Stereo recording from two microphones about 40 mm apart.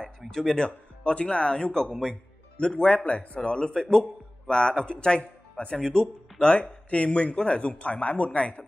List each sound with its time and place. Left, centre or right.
0.3 s speech: centre
0.7 s speech: left
1.9 s speech: centre
2.5 s speech: left
5.8 s speech: centre; by 8.3 s left
8.3 s speech: left